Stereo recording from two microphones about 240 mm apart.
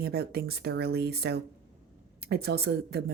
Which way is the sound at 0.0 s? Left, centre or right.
Right.